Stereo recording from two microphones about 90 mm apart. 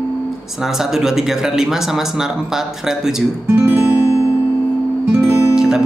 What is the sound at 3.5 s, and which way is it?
Music, 30° right (ahead or behind).